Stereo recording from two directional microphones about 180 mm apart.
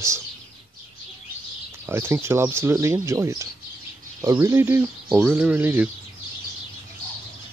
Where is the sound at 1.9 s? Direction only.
15° right (ahead or behind).